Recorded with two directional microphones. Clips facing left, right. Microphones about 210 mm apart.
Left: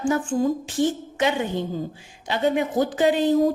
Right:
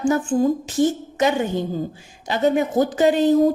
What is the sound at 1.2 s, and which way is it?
A woman's voice, 40° right (ahead or behind).